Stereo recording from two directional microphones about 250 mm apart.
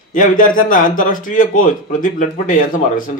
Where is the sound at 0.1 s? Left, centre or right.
Left.